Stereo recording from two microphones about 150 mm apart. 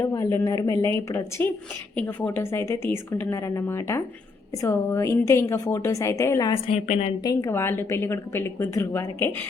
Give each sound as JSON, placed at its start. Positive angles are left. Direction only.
{"t": 0.0, "sound": "a woman's voice", "side_deg": 20}
{"t": 2.0, "sound": "a woman's voice", "side_deg": 15}
{"t": 6.7, "sound": "a woman's voice", "side_deg": 50}
{"t": 7.3, "sound": "a woman's voice", "side_deg": 20}